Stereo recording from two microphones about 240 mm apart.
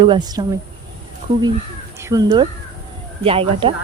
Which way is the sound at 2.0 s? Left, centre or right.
Centre.